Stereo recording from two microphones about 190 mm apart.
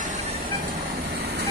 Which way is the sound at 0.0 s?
35° right (ahead or behind).